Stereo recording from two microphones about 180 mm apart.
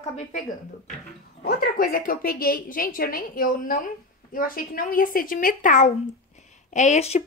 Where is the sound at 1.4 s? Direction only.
55° left (ahead or behind).